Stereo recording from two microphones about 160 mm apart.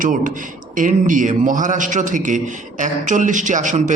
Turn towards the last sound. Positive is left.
turn(degrees=-50)  # may be behind; listen again after turning